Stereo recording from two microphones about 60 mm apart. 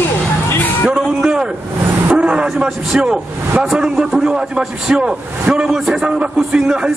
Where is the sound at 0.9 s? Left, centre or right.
Centre.